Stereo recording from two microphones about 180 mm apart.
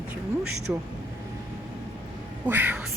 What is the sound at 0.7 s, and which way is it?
Speech, 10° right (ahead or behind).